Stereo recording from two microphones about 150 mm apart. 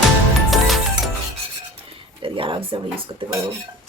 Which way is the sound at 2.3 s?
35° right (ahead or behind).